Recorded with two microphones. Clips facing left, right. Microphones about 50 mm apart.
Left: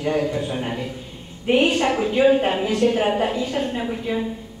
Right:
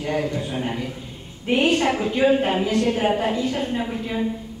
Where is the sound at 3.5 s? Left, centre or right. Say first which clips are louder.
Left 1 dB; centre.